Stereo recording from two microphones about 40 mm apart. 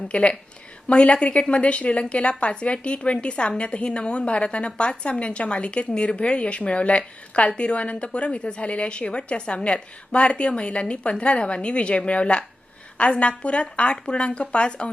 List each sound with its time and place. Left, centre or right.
0.1 s a woman's voice: left